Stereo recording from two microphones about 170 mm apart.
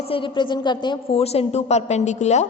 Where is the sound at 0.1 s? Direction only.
30° left (ahead or behind).